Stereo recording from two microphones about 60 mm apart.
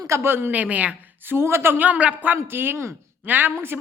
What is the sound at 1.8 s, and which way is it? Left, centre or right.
Speech, right.